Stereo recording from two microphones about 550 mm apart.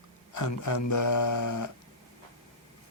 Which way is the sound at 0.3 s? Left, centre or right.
Left.